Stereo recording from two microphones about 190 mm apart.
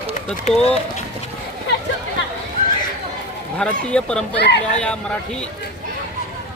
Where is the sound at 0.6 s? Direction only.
30° left (ahead or behind).